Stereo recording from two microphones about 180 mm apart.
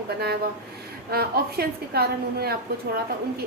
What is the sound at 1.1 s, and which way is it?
A woman's voice, 60° right (ahead or behind).